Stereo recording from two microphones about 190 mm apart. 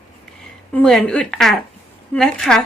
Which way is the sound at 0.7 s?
5° left (ahead or behind).